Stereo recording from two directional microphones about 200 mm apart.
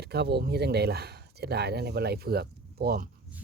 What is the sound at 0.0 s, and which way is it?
Speech, 55° right (ahead or behind).